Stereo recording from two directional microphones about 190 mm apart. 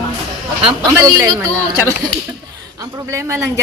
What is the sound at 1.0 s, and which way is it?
Speech, 15° right (ahead or behind).